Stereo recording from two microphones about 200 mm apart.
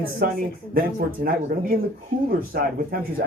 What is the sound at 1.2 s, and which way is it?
Speech, 45° right (ahead or behind).